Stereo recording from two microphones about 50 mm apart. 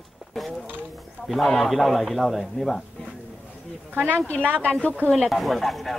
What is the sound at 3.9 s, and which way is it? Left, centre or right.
Speech, right.